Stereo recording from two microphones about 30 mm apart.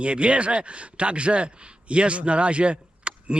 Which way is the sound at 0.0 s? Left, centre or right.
Right.